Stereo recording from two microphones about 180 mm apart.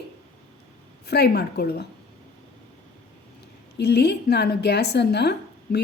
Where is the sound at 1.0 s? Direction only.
65° left (ahead or behind).